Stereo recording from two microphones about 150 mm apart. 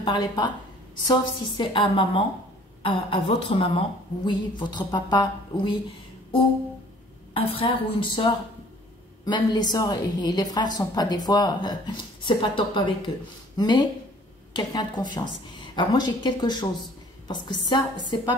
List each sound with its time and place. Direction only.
0.0 s a woman's voice: 30° left (ahead or behind)
7.3 s a woman's voice: 35° left (ahead or behind)